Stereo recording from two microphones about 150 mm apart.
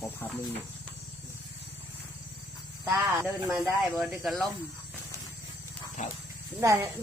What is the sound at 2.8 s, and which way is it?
Speech, 15° right (ahead or behind).